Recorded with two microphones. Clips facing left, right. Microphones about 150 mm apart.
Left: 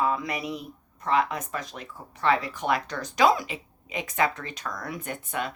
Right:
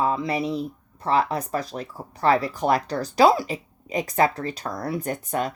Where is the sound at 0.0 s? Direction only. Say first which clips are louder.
Right 4 dB; 30° right (ahead or behind).